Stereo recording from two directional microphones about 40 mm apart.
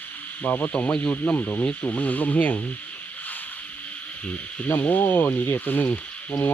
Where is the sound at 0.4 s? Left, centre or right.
Left.